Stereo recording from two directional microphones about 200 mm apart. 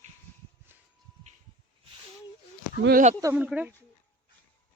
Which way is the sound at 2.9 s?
45° right (ahead or behind).